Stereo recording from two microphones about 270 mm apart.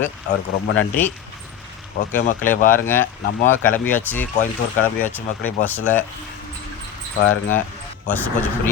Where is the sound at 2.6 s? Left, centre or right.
Left.